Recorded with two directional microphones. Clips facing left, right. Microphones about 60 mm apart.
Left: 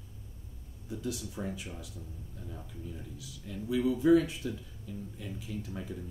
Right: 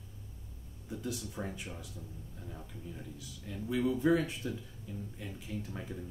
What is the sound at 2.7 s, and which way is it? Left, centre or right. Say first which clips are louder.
Speech: left 1 dB; right.